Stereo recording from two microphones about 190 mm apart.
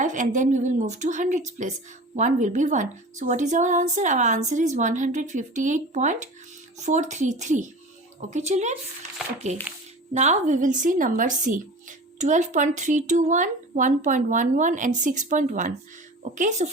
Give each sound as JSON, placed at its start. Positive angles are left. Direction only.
{"t": 0.0, "sound": "speech", "side_deg": -40}